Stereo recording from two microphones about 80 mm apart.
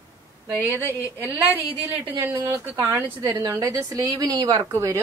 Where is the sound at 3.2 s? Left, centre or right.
Right.